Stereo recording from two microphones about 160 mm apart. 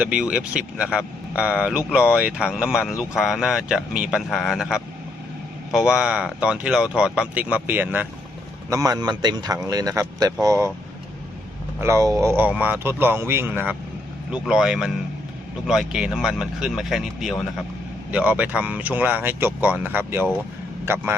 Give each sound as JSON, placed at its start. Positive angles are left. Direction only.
{"t": 0.0, "sound": "speech", "side_deg": -5}
{"t": 8.7, "sound": "a man's voice", "side_deg": -25}
{"t": 11.8, "sound": "speech", "side_deg": -20}